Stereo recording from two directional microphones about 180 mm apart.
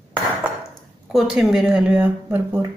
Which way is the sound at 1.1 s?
Centre (ahead or behind).